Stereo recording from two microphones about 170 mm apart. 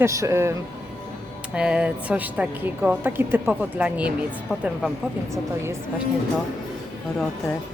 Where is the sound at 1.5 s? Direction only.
5° right (ahead or behind).